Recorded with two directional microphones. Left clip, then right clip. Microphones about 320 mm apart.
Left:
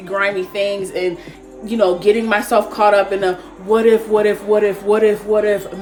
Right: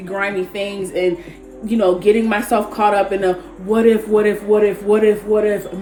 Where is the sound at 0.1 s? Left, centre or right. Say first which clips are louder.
Left 3 dB; centre.